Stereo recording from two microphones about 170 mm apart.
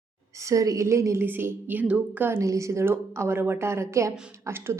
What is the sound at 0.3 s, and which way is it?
A woman's voice, 20° right (ahead or behind).